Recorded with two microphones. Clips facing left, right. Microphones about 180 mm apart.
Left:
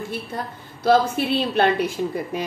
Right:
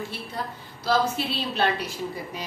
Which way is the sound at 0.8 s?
55° left (ahead or behind).